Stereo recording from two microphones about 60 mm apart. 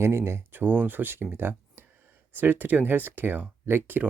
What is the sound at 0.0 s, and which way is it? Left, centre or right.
Speech, right.